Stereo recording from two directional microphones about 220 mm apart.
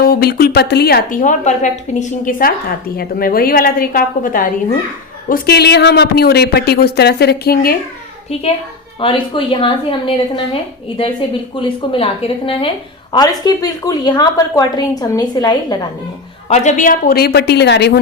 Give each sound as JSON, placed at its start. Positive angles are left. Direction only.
{"t": 0.0, "sound": "speech", "side_deg": 45}
{"t": 9.0, "sound": "a woman's voice", "side_deg": 25}
{"t": 16.5, "sound": "speech", "side_deg": 35}